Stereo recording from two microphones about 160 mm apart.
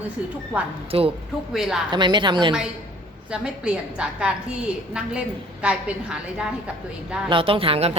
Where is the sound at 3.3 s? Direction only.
5° right (ahead or behind).